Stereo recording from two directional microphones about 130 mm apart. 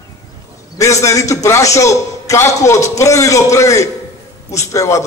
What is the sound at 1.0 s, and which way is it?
A man's voice, 25° left (ahead or behind).